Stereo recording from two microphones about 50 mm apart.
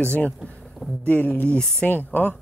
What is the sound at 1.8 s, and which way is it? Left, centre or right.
Speech, centre.